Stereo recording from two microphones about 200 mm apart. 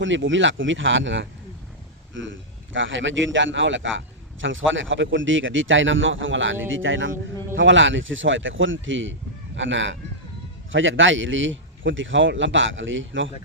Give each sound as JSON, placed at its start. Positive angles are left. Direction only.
{"t": 0.0, "sound": "a man's voice", "side_deg": -70}